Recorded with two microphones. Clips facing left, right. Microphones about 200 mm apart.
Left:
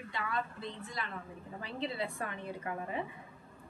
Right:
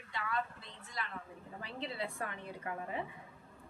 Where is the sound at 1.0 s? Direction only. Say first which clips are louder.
Even; 25° left (ahead or behind).